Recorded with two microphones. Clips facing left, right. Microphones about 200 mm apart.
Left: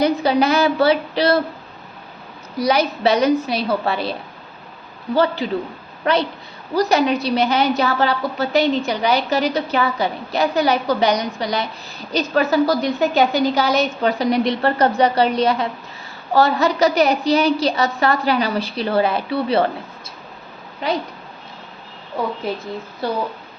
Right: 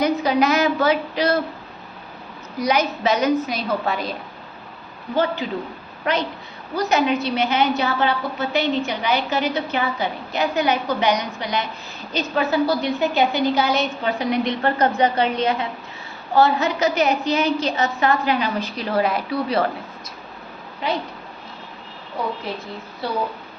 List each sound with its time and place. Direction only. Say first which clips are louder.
0.0 s a woman's voice: left 2 dB; 30° left (ahead or behind)
2.6 s a woman's voice: left 3 dB; 35° left (ahead or behind)
5.1 s a woman's voice: left 3 dB; 35° left (ahead or behind)
6.7 s a woman's voice: left 3 dB; 35° left (ahead or behind)